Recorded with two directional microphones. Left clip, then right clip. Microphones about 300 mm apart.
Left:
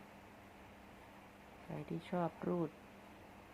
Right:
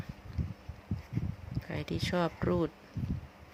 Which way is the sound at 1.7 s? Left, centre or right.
Right.